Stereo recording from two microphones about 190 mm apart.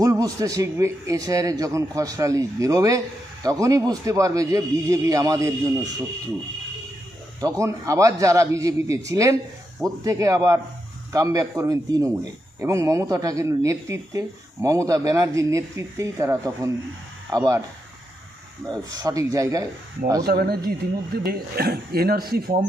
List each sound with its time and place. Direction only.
0.0 s speech: 20° right (ahead or behind)
7.4 s speech: 15° right (ahead or behind)
18.7 s speech: 20° right (ahead or behind)
20.2 s speech: 55° right (ahead or behind)